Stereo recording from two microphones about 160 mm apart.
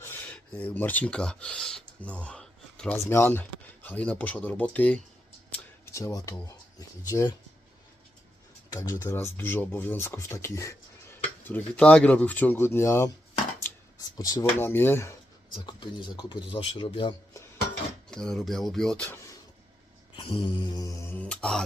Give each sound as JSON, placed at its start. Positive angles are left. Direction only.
{"t": 0.0, "sound": "speech", "side_deg": 10}
{"t": 8.7, "sound": "speech", "side_deg": 20}
{"t": 14.2, "sound": "speech", "side_deg": 20}
{"t": 15.5, "sound": "speech", "side_deg": 30}
{"t": 18.1, "sound": "speech", "side_deg": 5}
{"t": 20.1, "sound": "speech", "side_deg": 30}